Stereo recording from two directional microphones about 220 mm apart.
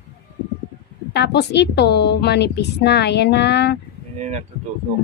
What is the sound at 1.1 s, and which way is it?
A woman's voice, 50° left (ahead or behind).